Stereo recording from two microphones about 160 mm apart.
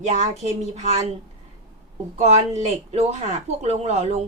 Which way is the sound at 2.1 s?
45° right (ahead or behind).